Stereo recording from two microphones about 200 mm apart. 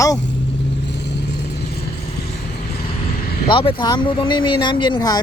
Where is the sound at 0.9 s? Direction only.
60° left (ahead or behind).